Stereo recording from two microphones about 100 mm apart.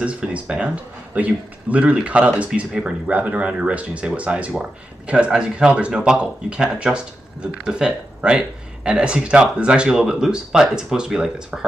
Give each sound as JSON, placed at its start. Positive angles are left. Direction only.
{"t": 0.0, "sound": "speech", "side_deg": -10}